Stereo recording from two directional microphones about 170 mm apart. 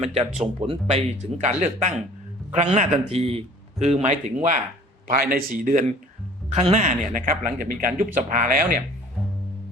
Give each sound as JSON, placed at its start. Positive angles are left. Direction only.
{"t": 0.0, "sound": "speech", "side_deg": -40}
{"t": 5.0, "sound": "speech", "side_deg": -60}
{"t": 6.5, "sound": "speech", "side_deg": -40}